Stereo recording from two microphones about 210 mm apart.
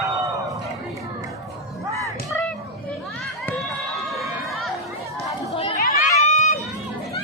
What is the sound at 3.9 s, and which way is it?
Crowd, centre (ahead or behind).